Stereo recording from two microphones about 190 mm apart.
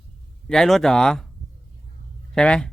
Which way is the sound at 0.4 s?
5° left (ahead or behind).